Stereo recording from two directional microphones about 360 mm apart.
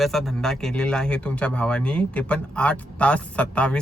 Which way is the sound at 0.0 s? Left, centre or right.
Centre.